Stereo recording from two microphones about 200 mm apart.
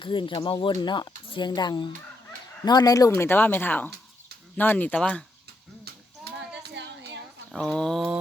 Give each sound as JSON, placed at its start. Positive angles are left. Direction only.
{"t": 0.0, "sound": "a woman's voice", "side_deg": 25}
{"t": 5.8, "sound": "a sound", "side_deg": -55}
{"t": 7.5, "sound": "speech", "side_deg": 5}